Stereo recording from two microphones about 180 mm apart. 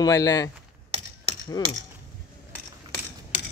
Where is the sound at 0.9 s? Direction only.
30° right (ahead or behind).